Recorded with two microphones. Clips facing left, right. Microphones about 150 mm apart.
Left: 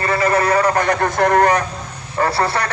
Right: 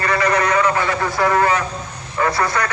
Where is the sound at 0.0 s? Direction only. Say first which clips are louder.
Left 1 dB; 30° left (ahead or behind).